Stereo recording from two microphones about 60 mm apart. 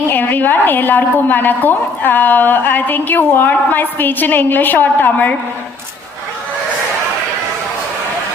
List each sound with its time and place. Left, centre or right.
0.1 s a woman's voice: left